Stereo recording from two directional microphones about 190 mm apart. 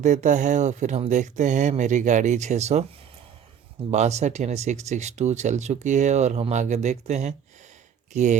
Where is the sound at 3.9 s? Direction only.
35° right (ahead or behind).